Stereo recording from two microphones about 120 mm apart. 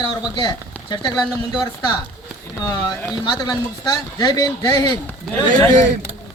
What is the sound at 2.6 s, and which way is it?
Speech, 30° left (ahead or behind).